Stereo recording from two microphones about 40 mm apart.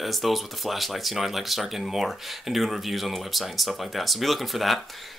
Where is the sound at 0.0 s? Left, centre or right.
Centre.